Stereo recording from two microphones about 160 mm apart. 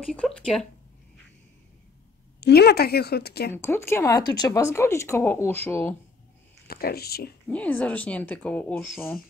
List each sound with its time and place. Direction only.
0.0 s speech: 5° left (ahead or behind)
2.4 s a woman's voice: 90° left
3.5 s speech: 15° left (ahead or behind)
6.7 s speech: 75° left (ahead or behind)
7.4 s speech: 10° left (ahead or behind)